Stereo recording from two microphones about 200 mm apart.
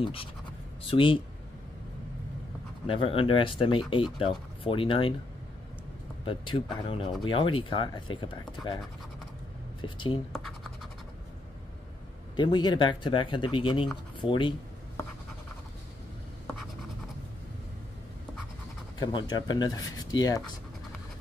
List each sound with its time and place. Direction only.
0.0 s speech: 25° left (ahead or behind)
2.9 s speech: 25° left (ahead or behind)
6.2 s speech: 25° left (ahead or behind)
9.8 s speech: 25° left (ahead or behind)
12.4 s speech: 20° left (ahead or behind)
18.9 s speech: 20° left (ahead or behind)